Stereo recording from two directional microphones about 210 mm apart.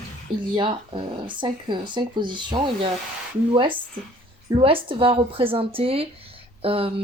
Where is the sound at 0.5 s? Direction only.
25° right (ahead or behind).